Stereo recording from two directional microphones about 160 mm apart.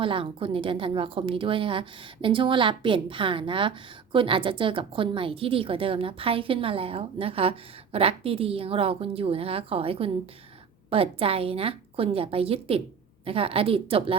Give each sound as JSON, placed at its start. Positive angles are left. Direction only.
{"t": 0.0, "sound": "a woman's voice", "side_deg": -35}